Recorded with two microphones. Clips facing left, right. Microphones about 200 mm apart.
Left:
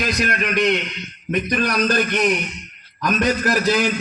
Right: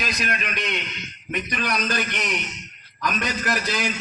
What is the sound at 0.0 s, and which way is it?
Speech, 65° left (ahead or behind).